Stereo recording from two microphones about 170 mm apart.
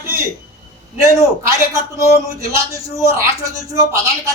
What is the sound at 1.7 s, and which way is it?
A man's voice, 15° right (ahead or behind).